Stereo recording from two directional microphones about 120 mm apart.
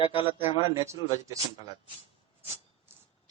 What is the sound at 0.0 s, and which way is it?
Speech, 50° left (ahead or behind).